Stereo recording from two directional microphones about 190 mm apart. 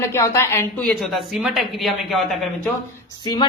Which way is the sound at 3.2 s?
25° left (ahead or behind).